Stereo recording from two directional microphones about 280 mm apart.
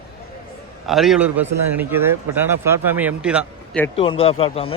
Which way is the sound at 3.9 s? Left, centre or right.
Centre.